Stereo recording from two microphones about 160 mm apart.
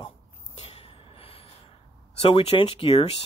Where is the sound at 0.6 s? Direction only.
40° left (ahead or behind).